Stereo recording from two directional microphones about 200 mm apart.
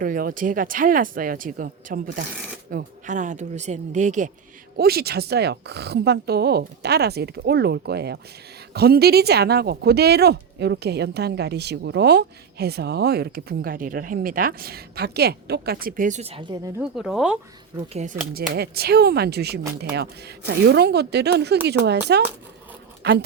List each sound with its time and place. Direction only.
0.0 s speech: 45° right (ahead or behind)
4.8 s speech: 50° right (ahead or behind); by 16.7 s 25° right (ahead or behind)
17.0 s speech: centre (ahead or behind)
17.9 s speech: 40° right (ahead or behind)
18.5 s speech: 50° right (ahead or behind)